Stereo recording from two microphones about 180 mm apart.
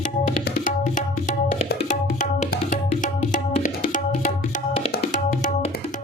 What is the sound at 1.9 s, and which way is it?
Music, 45° left (ahead or behind).